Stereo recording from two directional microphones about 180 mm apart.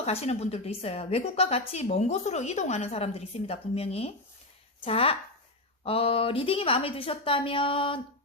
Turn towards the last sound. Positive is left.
turn(degrees=30)  # may be behind; listen again after turning